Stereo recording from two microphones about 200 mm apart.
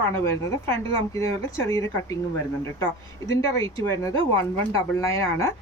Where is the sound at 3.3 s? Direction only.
15° left (ahead or behind).